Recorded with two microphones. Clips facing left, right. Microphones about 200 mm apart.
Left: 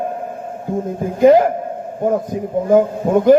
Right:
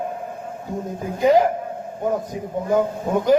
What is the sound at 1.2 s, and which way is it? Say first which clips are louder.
A man's voice: left 6 dB; 50° left (ahead or behind).